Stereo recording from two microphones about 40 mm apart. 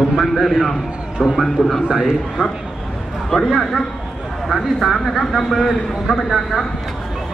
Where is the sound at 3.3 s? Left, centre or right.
Centre.